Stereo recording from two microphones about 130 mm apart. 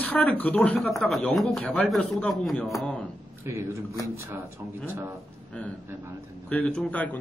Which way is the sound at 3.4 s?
25° right (ahead or behind).